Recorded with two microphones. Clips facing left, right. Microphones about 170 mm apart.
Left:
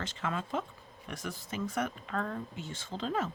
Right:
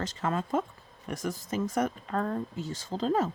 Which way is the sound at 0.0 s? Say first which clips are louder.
Right 5 dB; 40° right (ahead or behind).